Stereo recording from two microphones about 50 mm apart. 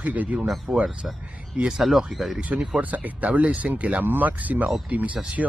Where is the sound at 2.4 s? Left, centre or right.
Right.